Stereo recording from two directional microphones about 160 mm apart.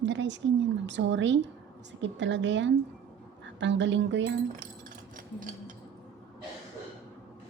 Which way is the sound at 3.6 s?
90° right.